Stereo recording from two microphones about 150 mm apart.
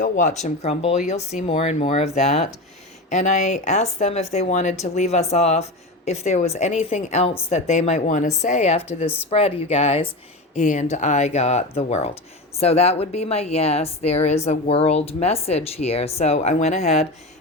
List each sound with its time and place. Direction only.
0.0 s a woman's voice: 55° left (ahead or behind)
10.5 s a woman's voice: 55° left (ahead or behind)